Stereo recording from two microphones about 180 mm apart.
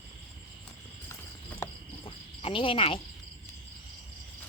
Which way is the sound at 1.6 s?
15° left (ahead or behind).